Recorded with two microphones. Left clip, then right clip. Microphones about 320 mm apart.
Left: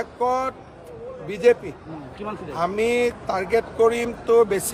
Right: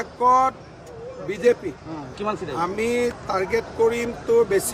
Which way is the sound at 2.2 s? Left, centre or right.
Right.